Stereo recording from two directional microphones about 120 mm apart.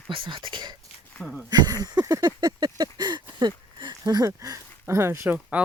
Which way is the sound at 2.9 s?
35° right (ahead or behind).